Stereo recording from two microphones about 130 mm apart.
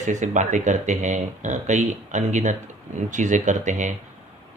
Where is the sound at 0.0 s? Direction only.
70° right (ahead or behind).